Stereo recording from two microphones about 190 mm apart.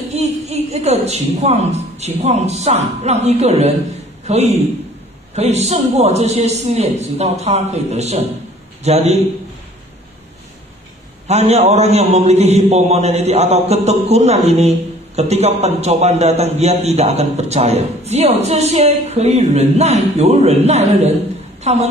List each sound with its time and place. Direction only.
0.1 s a woman's voice: 35° right (ahead or behind)
11.2 s a man's voice: 35° right (ahead or behind)